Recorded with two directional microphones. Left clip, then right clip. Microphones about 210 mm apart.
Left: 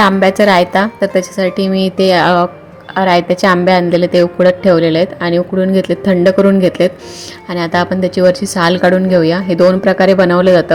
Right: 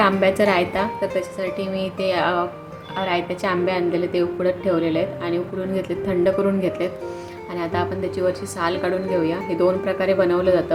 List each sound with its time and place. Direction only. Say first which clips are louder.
0.0 s a woman's voice: left 8 dB; 40° left (ahead or behind)